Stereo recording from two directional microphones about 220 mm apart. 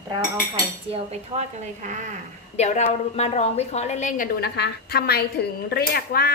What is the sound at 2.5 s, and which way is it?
A woman's voice, 30° left (ahead or behind).